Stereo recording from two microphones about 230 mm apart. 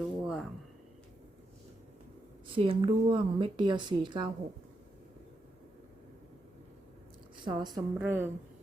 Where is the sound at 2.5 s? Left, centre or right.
Right.